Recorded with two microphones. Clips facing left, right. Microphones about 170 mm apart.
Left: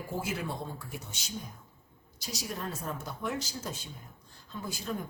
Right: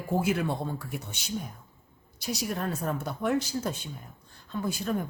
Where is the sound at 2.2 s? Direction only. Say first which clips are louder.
Right 7 dB; 60° right (ahead or behind).